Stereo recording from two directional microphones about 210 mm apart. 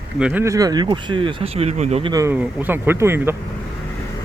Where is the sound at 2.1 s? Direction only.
15° right (ahead or behind).